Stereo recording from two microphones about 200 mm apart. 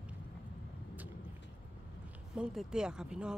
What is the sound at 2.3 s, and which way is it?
Speech, centre (ahead or behind).